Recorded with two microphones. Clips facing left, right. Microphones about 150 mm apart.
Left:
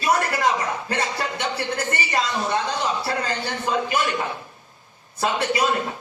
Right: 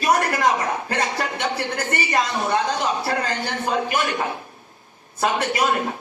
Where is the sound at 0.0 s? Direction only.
45° right (ahead or behind).